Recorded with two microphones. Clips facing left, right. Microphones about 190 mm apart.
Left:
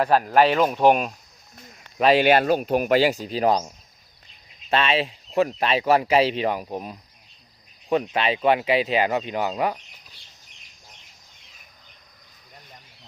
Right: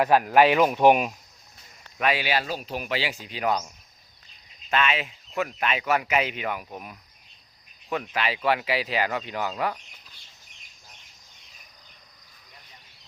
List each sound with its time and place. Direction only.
0.0 s speech: 10° right (ahead or behind)
2.1 s speech: 55° left (ahead or behind); by 3.7 s 35° left (ahead or behind)
4.7 s speech: 30° left (ahead or behind)